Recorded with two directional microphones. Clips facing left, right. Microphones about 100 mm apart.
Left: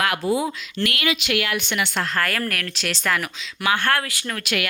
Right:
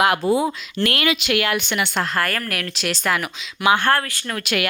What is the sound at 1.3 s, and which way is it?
Speech, 35° right (ahead or behind).